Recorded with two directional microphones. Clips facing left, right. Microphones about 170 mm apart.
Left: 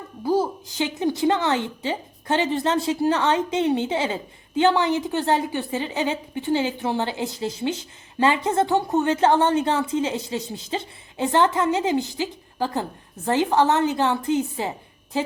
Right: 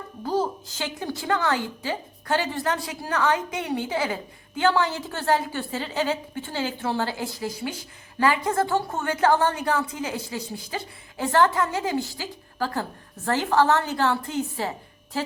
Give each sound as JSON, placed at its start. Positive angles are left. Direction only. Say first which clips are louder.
{"t": 0.2, "sound": "a woman's voice", "louder": "left 4 dB", "side_deg": 10}